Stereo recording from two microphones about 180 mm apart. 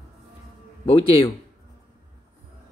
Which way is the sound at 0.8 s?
30° left (ahead or behind).